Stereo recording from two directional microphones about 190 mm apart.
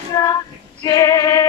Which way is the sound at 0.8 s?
15° left (ahead or behind).